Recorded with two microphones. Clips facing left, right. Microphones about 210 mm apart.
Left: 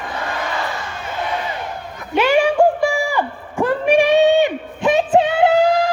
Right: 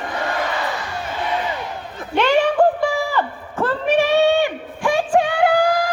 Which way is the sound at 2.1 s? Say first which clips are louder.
Left 1 dB; 10° left (ahead or behind).